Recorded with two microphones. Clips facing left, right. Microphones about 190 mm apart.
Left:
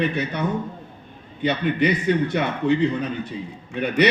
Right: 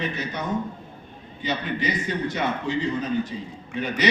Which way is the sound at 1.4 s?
60° left (ahead or behind).